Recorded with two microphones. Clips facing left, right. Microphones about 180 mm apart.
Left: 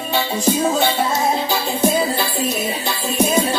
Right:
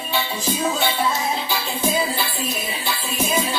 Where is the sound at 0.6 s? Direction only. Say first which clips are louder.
Left 4 dB; 45° left (ahead or behind).